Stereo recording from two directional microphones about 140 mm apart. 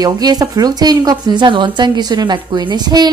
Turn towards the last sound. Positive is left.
turn(degrees=-30)  # may be behind; listen again after turning